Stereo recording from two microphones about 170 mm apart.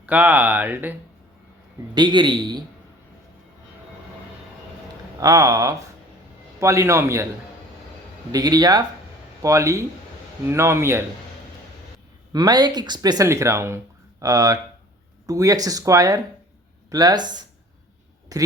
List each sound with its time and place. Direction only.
0.0 s speech: 10° right (ahead or behind)
2.0 s speech: 25° right (ahead or behind)
5.2 s speech: 20° right (ahead or behind)
8.3 s speech: 20° right (ahead or behind)
12.3 s speech: 25° right (ahead or behind)